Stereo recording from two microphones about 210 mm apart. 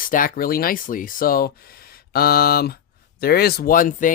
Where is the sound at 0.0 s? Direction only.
40° left (ahead or behind).